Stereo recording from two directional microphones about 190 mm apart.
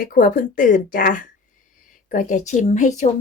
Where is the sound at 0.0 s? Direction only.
45° left (ahead or behind).